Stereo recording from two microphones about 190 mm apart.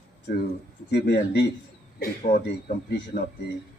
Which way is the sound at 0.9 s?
60° left (ahead or behind).